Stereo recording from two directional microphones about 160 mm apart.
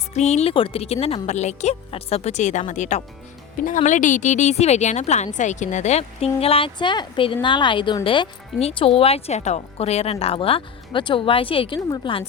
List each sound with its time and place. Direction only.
0.1 s speech: 45° left (ahead or behind)